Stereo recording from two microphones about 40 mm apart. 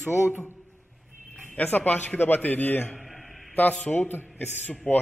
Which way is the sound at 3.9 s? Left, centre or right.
Left.